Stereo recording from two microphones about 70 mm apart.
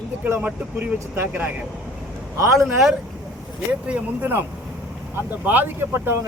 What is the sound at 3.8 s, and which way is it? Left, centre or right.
Speech, centre.